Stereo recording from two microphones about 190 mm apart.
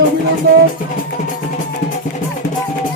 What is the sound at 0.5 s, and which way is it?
Music, 60° right (ahead or behind).